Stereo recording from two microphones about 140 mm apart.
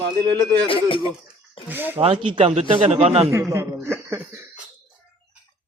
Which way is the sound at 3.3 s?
20° right (ahead or behind).